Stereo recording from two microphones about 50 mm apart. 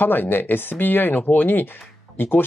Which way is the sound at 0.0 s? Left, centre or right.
Left.